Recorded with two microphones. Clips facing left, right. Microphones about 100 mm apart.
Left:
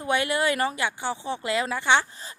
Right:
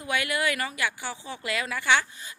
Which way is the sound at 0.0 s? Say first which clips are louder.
Left 4 dB; 30° left (ahead or behind).